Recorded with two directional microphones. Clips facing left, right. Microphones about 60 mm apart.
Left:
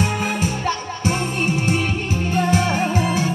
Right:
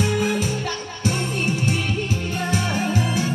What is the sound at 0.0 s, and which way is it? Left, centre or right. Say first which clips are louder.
Music: even; left.